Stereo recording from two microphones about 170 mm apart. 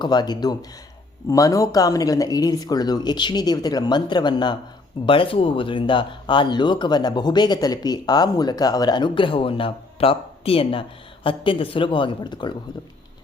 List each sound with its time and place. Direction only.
0.0 s speech: 25° left (ahead or behind)